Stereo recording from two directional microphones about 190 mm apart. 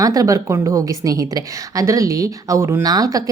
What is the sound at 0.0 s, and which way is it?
A woman's voice, 20° right (ahead or behind).